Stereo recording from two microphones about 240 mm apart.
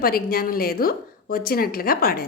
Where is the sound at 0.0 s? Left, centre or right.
Left.